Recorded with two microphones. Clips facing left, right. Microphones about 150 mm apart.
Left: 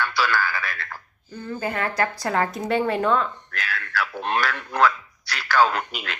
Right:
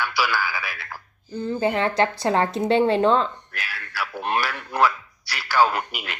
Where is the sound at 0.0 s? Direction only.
10° right (ahead or behind).